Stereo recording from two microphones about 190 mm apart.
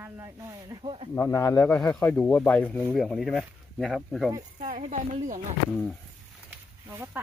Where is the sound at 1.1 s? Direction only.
10° left (ahead or behind).